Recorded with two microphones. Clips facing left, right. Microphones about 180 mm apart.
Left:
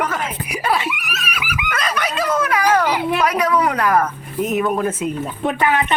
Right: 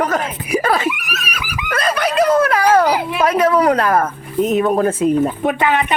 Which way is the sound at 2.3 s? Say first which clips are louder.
Right 2 dB; 35° right (ahead or behind).